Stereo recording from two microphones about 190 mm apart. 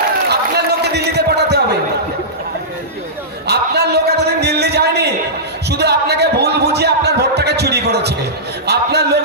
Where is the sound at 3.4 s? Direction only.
60° right (ahead or behind).